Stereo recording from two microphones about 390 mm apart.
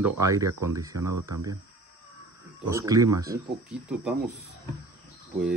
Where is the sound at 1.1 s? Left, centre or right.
Right.